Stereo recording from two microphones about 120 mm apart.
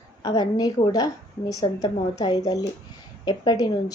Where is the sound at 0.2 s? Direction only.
35° left (ahead or behind).